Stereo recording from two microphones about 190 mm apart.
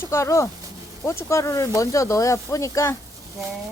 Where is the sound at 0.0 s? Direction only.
15° left (ahead or behind).